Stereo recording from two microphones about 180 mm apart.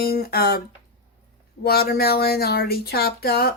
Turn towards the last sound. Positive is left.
turn(degrees=60)  # may be behind; listen again after turning